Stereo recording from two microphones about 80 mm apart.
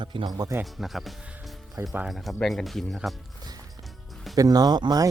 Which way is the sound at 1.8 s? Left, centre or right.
Right.